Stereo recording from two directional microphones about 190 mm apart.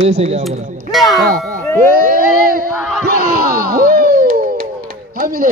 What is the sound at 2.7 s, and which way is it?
Speech, centre (ahead or behind).